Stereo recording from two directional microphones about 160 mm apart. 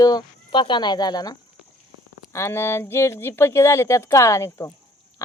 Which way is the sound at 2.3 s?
15° left (ahead or behind).